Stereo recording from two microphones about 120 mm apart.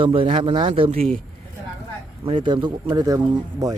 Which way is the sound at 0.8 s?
55° right (ahead or behind).